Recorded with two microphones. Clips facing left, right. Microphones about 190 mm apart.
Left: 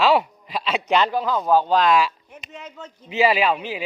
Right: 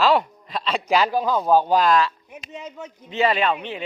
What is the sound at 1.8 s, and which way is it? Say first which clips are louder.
Speech: even; 5° left (ahead or behind).